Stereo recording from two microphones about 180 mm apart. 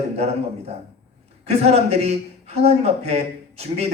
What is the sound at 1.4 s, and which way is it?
Speech, 35° right (ahead or behind).